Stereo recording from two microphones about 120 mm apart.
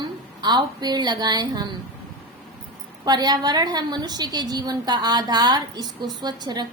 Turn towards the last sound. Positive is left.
turn(degrees=-35)  # may be behind; listen again after turning